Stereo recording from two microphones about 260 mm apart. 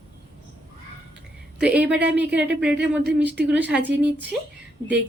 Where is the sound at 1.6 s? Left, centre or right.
Centre.